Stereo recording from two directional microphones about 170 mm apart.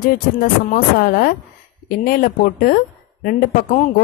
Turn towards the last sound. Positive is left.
turn(degrees=55)  # may be behind; listen again after turning